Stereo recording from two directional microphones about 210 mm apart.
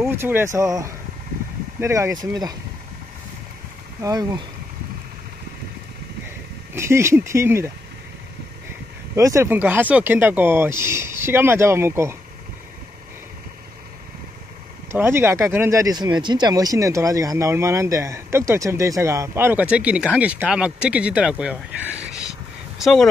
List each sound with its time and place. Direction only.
0.0 s speech: 10° right (ahead or behind)
4.0 s speech: 15° right (ahead or behind)
6.7 s speech: 10° right (ahead or behind)
9.1 s speech: 15° right (ahead or behind)
14.9 s speech: 10° right (ahead or behind)